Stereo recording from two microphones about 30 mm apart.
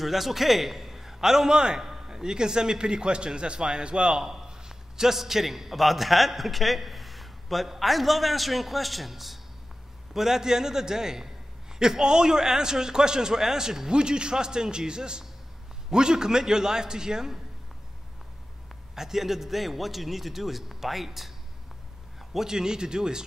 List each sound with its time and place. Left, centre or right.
0.0 s a man's voice: centre; by 4.3 s right
4.3 s a sound: centre
5.1 s a man's voice: centre
18.9 s a man's voice: centre
22.3 s a man's voice: centre